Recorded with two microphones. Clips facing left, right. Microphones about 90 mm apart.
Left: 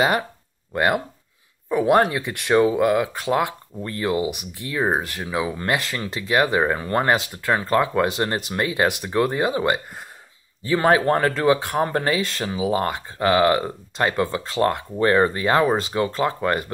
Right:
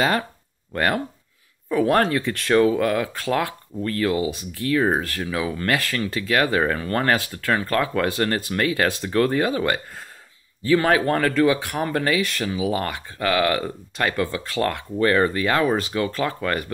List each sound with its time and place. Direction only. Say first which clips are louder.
0.7 s speech: left 2 dB; 15° left (ahead or behind)